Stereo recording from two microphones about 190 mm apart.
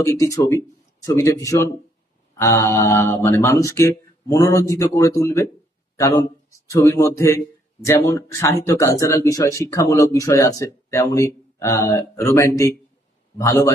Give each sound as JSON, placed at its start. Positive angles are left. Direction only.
{"t": 0.0, "sound": "speech", "side_deg": 15}